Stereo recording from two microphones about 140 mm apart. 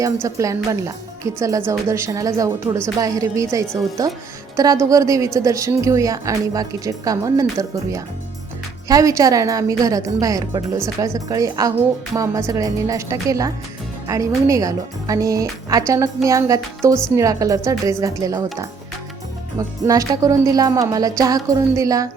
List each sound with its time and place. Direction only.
0.0 s a woman's voice: 20° right (ahead or behind)
19.5 s a woman's voice: 25° right (ahead or behind)